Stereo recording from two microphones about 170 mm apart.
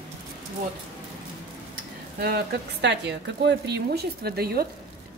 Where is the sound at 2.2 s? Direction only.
70° right (ahead or behind).